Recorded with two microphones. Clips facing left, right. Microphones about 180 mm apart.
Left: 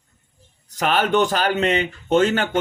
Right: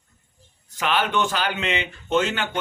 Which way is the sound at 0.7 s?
40° left (ahead or behind).